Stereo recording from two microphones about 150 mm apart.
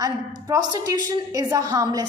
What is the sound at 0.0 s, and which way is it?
A woman's voice, 25° right (ahead or behind).